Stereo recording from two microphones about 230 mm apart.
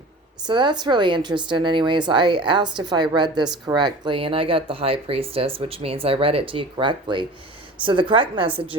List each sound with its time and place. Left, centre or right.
0.4 s speech: centre